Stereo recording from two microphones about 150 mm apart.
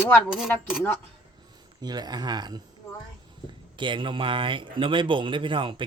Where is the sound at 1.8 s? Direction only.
25° right (ahead or behind).